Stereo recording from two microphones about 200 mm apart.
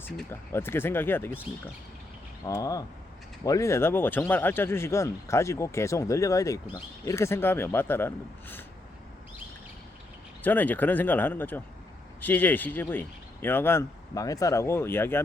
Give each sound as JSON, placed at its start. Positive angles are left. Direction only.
{"t": 0.3, "sound": "speech", "side_deg": 10}
{"t": 2.4, "sound": "speech", "side_deg": 15}
{"t": 10.4, "sound": "speech", "side_deg": 10}